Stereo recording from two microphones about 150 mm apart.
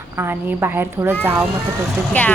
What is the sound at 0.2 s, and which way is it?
Speech, 15° right (ahead or behind).